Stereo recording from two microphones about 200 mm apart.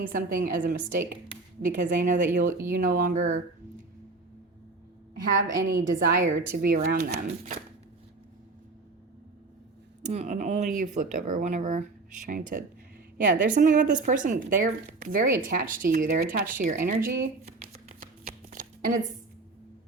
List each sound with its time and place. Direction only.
0.1 s speech: 45° right (ahead or behind)
5.5 s speech: 50° right (ahead or behind)
10.0 s speech: 35° right (ahead or behind)
18.0 s shuffling cards: 35° right (ahead or behind)